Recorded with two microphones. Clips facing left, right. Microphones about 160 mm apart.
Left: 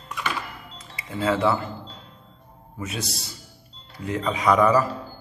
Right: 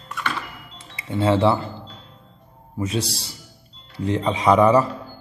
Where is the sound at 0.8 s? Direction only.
30° right (ahead or behind).